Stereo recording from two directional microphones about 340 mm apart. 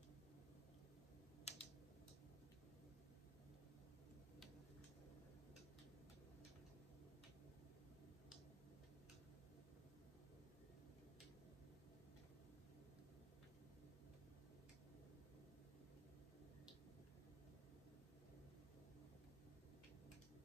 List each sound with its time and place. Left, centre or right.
1.5 s typing: centre